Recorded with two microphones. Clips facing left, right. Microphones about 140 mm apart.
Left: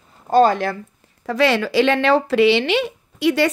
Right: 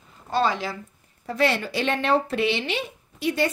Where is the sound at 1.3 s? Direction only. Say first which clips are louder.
Left 6 dB; 90° left.